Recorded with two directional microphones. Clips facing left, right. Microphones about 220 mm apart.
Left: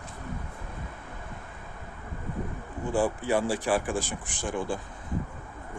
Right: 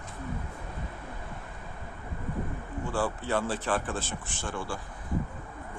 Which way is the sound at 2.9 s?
15° left (ahead or behind).